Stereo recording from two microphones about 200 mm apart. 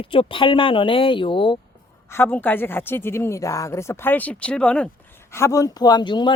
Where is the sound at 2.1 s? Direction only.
10° left (ahead or behind).